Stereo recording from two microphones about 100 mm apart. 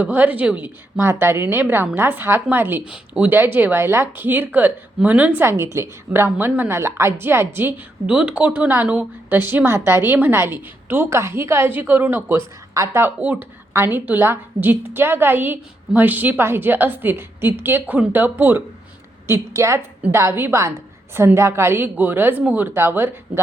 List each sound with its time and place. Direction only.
0.0 s a woman's voice: 15° right (ahead or behind)
2.8 s a woman's voice: 10° right (ahead or behind)